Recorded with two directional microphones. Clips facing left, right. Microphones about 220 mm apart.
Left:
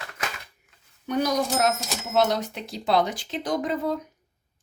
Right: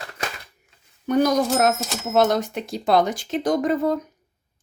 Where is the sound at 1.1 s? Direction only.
50° right (ahead or behind).